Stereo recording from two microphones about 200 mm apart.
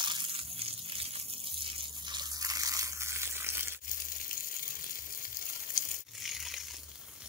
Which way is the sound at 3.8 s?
45° left (ahead or behind).